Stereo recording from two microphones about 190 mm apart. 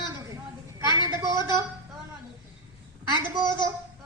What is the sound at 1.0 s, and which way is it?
Speech, 25° left (ahead or behind).